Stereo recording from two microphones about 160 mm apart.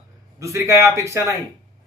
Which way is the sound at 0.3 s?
20° right (ahead or behind).